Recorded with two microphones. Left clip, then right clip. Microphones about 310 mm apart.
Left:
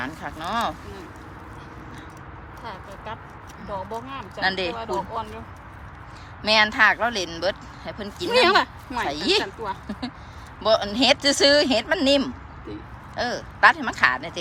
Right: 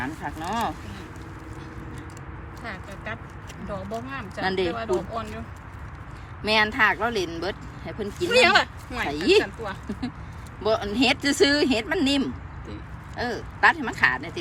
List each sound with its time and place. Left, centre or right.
0.0 s speech: centre
3.9 s speech: centre
4.7 s speech: centre
6.4 s speech: centre
8.3 s speech: left
9.0 s speech: centre
10.6 s speech: centre